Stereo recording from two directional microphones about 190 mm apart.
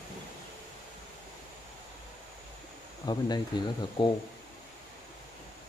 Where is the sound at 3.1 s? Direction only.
25° left (ahead or behind).